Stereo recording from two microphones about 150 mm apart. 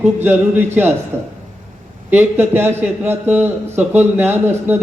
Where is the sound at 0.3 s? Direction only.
15° right (ahead or behind).